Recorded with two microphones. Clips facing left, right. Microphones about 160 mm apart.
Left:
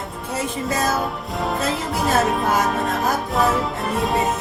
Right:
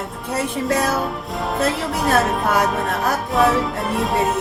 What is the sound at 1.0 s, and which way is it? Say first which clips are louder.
Music: even; centre (ahead or behind).